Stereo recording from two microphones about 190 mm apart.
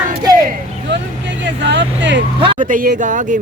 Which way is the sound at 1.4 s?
70° right (ahead or behind).